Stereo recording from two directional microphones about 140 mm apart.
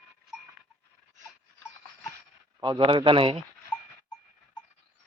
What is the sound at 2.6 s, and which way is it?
Speech, 35° right (ahead or behind).